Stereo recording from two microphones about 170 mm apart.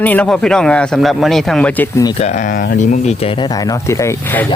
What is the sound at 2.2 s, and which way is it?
Speech, 50° left (ahead or behind).